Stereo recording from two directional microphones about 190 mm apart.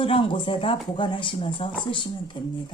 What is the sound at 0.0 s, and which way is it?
Speech, 25° left (ahead or behind).